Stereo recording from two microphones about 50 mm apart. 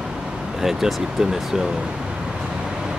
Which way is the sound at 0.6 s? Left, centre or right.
Centre.